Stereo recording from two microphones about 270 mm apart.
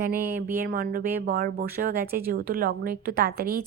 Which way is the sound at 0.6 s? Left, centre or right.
Right.